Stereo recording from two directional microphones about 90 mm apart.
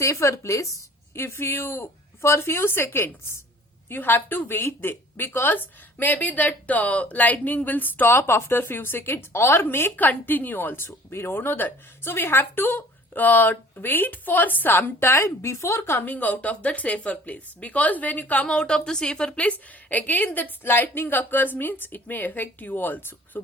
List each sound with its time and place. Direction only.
0.0 s a woman's voice: 35° left (ahead or behind)